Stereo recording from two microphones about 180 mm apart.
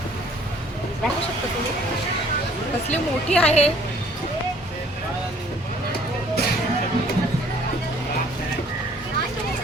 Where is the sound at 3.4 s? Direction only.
35° left (ahead or behind).